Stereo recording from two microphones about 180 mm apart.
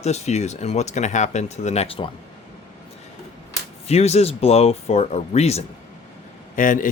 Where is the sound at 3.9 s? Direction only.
35° left (ahead or behind).